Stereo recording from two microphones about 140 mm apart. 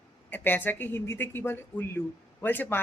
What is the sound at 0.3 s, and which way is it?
Speech, 15° left (ahead or behind).